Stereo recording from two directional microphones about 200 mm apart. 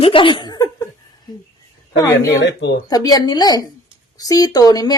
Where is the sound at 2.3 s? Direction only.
60° left (ahead or behind).